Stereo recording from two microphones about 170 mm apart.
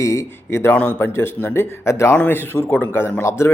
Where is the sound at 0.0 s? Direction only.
15° left (ahead or behind).